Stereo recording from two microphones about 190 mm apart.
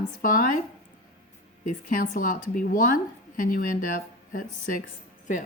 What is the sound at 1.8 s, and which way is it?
A woman's voice, 45° left (ahead or behind).